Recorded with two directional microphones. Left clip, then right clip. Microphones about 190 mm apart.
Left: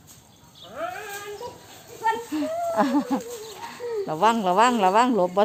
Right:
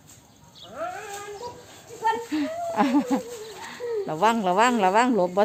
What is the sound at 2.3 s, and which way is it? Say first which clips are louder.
Speech: left 2 dB; 10° right (ahead or behind).